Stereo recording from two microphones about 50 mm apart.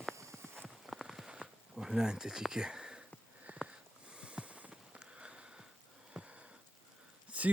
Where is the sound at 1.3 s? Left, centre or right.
Centre.